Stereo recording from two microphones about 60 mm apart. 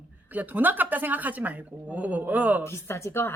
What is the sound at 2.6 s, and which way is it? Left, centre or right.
Speech, left.